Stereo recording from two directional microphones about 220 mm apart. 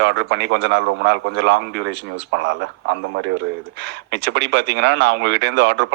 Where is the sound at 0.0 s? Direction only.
55° right (ahead or behind).